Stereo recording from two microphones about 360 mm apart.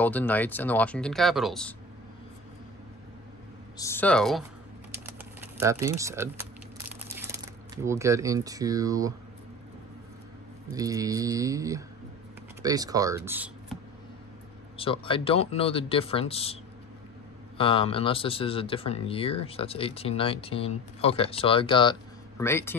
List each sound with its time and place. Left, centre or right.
0.0 s speech: centre
3.7 s speech: centre
5.0 s typing: centre
7.7 s speech: centre
10.7 s speech: centre
14.8 s speech: centre
17.6 s speech: centre